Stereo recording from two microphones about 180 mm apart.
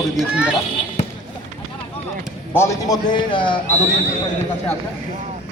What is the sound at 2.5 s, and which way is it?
A man's voice, 15° left (ahead or behind).